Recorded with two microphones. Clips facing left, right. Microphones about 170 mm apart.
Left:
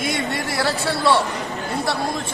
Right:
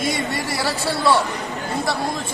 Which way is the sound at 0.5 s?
Centre (ahead or behind).